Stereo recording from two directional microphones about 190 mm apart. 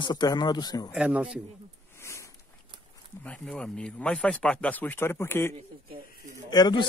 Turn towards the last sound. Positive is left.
turn(degrees=25)  # may be behind; listen again after turning